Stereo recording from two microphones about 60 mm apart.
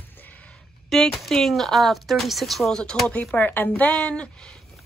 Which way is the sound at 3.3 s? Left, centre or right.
Left.